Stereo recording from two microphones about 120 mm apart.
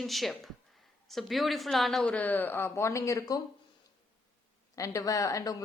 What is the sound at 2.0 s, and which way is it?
Speech, 15° left (ahead or behind).